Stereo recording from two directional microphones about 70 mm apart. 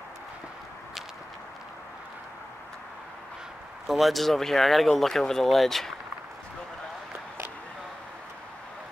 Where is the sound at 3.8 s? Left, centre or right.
Centre.